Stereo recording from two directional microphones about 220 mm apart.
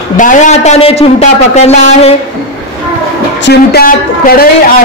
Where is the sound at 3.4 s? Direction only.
50° left (ahead or behind).